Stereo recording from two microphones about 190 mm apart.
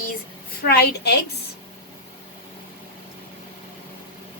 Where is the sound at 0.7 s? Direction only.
60° left (ahead or behind).